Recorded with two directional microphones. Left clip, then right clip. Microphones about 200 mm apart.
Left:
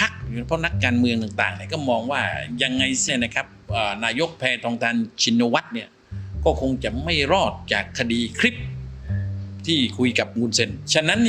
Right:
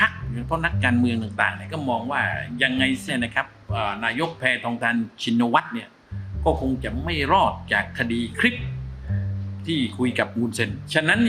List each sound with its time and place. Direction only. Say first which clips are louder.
0.0 s a man's voice: right 2 dB; 30° left (ahead or behind)
9.6 s speech: left 4 dB; 40° left (ahead or behind)